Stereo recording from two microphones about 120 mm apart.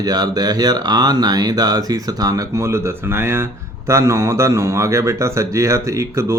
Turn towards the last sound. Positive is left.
turn(degrees=-25)  # may be behind; listen again after turning